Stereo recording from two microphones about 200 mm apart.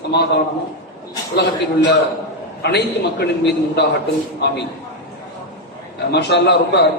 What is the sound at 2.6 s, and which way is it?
A man's voice, 55° left (ahead or behind).